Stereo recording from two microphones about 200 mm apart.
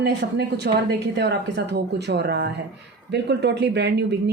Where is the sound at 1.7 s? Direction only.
55° right (ahead or behind).